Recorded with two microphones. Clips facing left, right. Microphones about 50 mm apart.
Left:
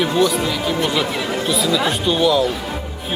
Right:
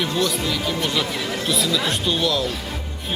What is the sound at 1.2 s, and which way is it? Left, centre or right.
Chatter, centre.